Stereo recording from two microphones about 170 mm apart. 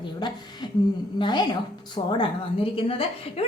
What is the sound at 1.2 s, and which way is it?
Speech, 25° left (ahead or behind).